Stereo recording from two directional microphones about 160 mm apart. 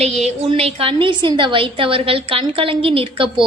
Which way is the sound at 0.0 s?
45° right (ahead or behind).